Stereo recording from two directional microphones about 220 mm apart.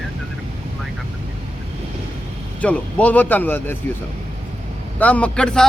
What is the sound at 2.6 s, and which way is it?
Speech, 5° left (ahead or behind).